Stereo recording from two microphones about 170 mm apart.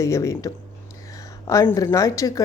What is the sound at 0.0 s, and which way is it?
A woman's voice, 15° left (ahead or behind).